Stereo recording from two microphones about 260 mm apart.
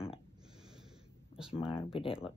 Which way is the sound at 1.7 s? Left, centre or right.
Left.